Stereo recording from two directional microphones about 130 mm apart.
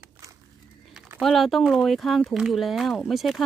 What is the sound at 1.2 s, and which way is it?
Speech, centre (ahead or behind).